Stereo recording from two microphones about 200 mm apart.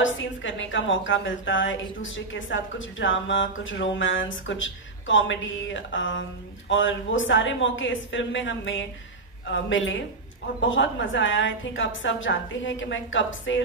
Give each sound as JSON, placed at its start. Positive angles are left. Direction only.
{"t": 0.0, "sound": "a woman's voice", "side_deg": 70}